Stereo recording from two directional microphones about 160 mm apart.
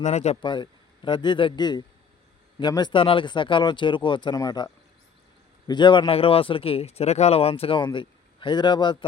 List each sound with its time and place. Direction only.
0.0 s speech: 45° left (ahead or behind)
0.4 s a man's voice: 30° left (ahead or behind)